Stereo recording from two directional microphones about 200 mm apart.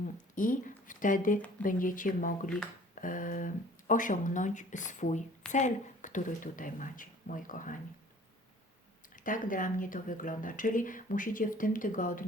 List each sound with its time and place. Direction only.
0.3 s speech: 40° left (ahead or behind)
9.1 s speech: 40° left (ahead or behind)